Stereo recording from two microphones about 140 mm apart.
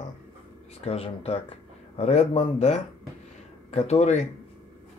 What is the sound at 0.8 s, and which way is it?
Speech, 45° left (ahead or behind).